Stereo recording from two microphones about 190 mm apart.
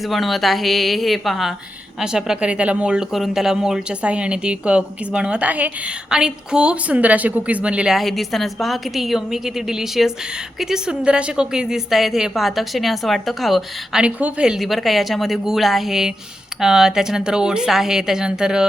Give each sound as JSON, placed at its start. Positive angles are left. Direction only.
{"t": 0.1, "sound": "speech", "side_deg": 0}